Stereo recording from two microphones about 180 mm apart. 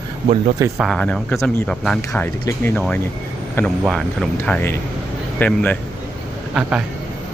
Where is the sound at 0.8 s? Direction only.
5° left (ahead or behind).